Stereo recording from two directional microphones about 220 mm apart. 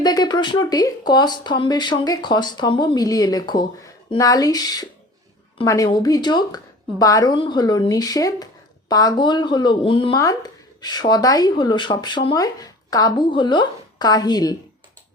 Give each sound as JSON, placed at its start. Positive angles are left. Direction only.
{"t": 0.0, "sound": "speech", "side_deg": 20}